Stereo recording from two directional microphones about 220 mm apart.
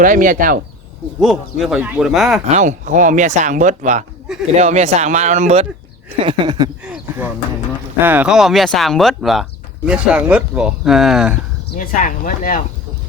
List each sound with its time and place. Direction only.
0.0 s speech: 40° right (ahead or behind)
1.2 s speech: centre (ahead or behind)
2.5 s speech: 35° right (ahead or behind)
6.2 s a sound: 20° right (ahead or behind)
6.9 s a sound: 10° right (ahead or behind)
7.9 s speech: 10° right (ahead or behind)
11.8 s speech: 35° left (ahead or behind)